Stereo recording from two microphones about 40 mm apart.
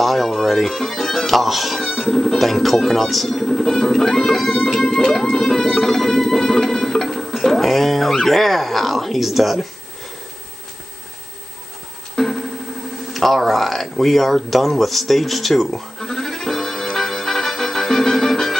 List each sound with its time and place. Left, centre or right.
0.0 s speech: centre
4.7 s music: centre
12.2 s music: centre
13.1 s speech: centre
16.9 s music: centre